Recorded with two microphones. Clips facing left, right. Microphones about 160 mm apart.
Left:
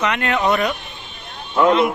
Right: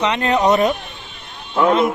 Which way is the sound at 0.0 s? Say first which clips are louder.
Right 3 dB; 30° right (ahead or behind).